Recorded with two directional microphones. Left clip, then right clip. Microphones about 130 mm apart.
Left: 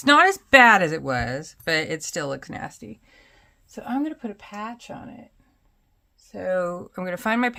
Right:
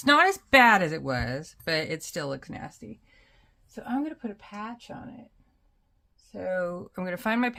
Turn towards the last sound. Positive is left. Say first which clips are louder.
# left 4 dB
turn(degrees=25)  # may be behind; listen again after turning